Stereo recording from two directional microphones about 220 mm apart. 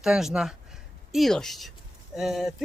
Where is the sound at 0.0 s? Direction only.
Centre (ahead or behind).